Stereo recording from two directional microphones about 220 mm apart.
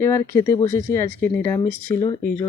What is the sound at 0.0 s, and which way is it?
Speech, 10° left (ahead or behind).